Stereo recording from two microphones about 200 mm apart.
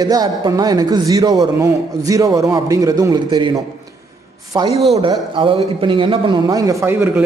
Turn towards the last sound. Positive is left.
turn(degrees=-15)  # may be behind; listen again after turning